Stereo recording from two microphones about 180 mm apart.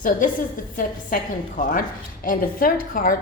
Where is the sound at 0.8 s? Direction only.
50° left (ahead or behind).